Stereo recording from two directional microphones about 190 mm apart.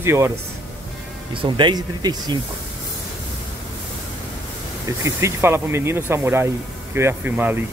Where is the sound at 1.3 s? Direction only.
25° right (ahead or behind).